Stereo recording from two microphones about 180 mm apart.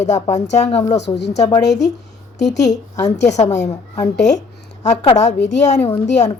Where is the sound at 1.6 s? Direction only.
70° left (ahead or behind).